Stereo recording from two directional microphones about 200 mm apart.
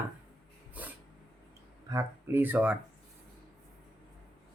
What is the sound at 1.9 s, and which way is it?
Speech, 10° right (ahead or behind).